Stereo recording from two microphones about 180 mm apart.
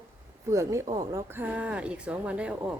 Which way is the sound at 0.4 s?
15° right (ahead or behind).